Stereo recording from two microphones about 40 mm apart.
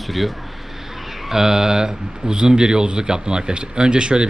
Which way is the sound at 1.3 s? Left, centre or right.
Centre.